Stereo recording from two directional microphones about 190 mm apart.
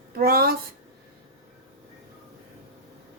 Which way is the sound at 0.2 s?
50° right (ahead or behind).